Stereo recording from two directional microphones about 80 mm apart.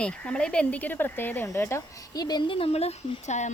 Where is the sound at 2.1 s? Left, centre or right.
Left.